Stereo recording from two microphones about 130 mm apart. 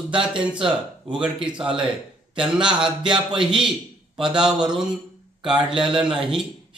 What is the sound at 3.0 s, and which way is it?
Music, 40° right (ahead or behind).